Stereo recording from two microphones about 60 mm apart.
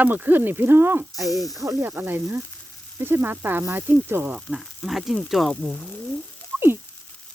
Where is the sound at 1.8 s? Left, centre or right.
Right.